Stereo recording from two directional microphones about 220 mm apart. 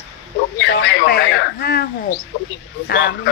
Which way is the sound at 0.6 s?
55° left (ahead or behind).